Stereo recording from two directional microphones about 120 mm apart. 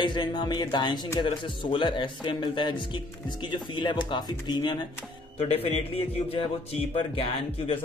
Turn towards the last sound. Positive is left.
turn(degrees=50)  # may be behind; listen again after turning